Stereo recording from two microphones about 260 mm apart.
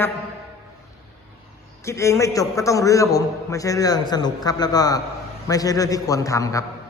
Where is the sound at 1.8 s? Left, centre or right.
Centre.